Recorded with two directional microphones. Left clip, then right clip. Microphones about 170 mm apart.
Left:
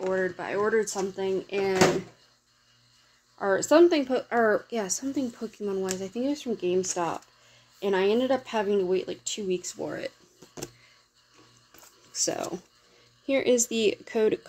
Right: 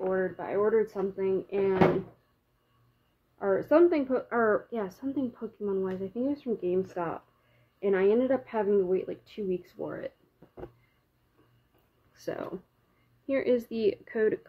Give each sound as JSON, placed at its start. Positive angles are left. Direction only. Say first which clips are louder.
{"t": 0.1, "sound": "speech", "louder": "left 2 dB", "side_deg": 30}
{"t": 3.3, "sound": "speech", "louder": "left 3 dB", "side_deg": 20}
{"t": 12.1, "sound": "speech", "louder": "left 6 dB", "side_deg": 35}